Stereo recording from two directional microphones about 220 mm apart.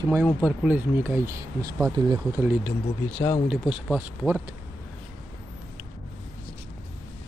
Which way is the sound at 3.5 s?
5° right (ahead or behind).